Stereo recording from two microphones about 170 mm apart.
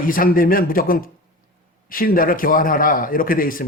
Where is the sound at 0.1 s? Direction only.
55° left (ahead or behind).